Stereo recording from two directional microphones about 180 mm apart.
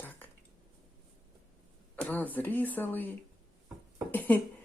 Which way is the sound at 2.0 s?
10° left (ahead or behind).